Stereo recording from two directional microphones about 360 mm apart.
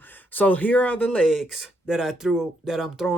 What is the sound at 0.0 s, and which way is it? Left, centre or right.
Speech, centre.